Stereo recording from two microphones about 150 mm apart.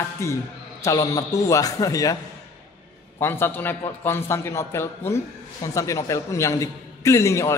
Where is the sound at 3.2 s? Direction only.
15° left (ahead or behind).